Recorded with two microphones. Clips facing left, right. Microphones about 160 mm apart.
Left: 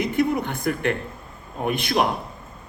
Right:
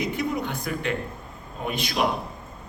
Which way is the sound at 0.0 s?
55° left (ahead or behind).